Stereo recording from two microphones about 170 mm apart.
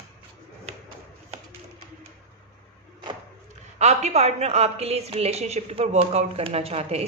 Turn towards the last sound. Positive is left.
turn(degrees=-35)  # may be behind; listen again after turning